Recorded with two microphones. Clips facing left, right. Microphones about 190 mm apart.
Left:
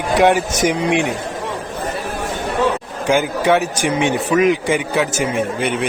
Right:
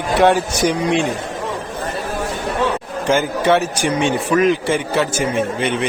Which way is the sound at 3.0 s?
10° left (ahead or behind).